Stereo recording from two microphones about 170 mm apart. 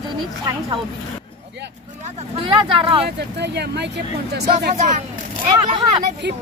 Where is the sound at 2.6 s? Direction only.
30° right (ahead or behind).